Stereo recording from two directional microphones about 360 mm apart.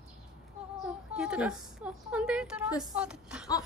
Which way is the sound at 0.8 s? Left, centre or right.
Centre.